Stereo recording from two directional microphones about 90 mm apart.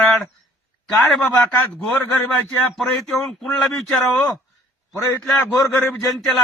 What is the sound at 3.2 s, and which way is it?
Speech, 5° left (ahead or behind).